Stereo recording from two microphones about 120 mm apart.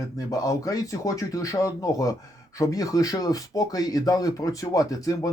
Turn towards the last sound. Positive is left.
turn(degrees=30)  # may be behind; listen again after turning